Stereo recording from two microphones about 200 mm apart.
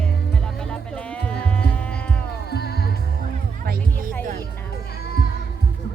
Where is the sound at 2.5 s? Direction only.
55° left (ahead or behind).